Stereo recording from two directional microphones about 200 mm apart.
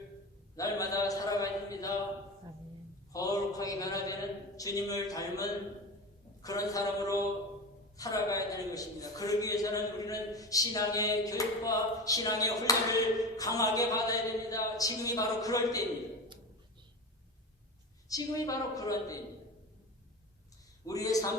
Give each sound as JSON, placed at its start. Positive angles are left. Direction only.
{"t": 0.5, "sound": "a man's voice", "side_deg": 15}
{"t": 3.1, "sound": "a man's voice", "side_deg": 15}
{"t": 18.1, "sound": "a man's voice", "side_deg": 15}
{"t": 20.8, "sound": "a man's voice", "side_deg": 15}